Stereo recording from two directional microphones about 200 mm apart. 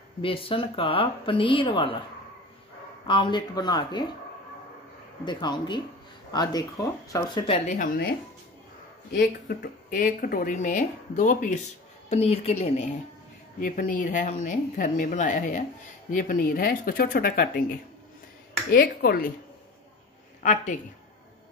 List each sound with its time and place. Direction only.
0.2 s speech: 25° left (ahead or behind)
3.1 s speech: 25° left (ahead or behind)
5.2 s speech: 20° left (ahead or behind); by 8.1 s 45° left (ahead or behind)
9.1 s speech: 45° left (ahead or behind)
18.7 s speech: 45° left (ahead or behind)